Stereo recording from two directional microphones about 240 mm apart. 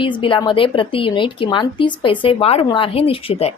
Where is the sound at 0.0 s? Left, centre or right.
Left.